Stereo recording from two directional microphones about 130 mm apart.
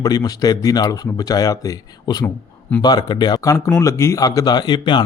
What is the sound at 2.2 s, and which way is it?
Speech, 10° left (ahead or behind).